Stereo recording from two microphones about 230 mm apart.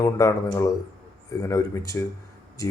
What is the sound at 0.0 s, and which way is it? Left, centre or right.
Speech, centre.